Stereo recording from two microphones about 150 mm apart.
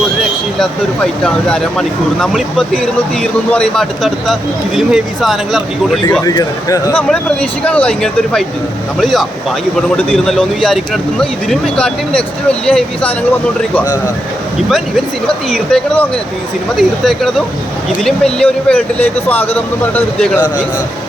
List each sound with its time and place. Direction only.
1.2 s speech: 5° left (ahead or behind)
6.2 s speech: 25° left (ahead or behind)
6.9 s speech: 5° left (ahead or behind)
14.7 s speech: centre (ahead or behind)